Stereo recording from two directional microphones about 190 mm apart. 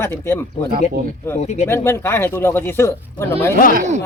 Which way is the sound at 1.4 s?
35° left (ahead or behind).